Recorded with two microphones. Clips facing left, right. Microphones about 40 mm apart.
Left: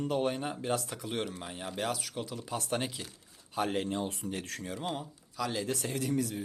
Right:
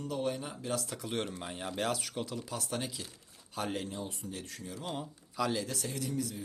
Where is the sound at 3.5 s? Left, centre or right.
Centre.